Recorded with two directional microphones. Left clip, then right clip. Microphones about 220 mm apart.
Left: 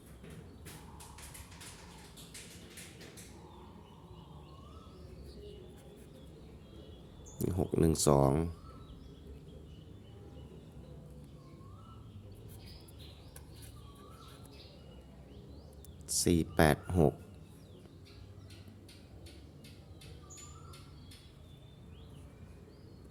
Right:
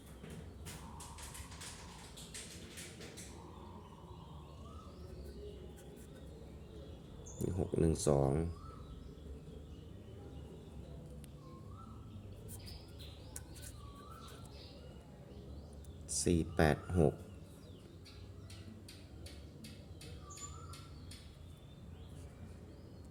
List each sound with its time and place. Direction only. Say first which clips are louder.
7.3 s speech: left 4 dB; 25° left (ahead or behind)
16.0 s speech: left 4 dB; 20° left (ahead or behind)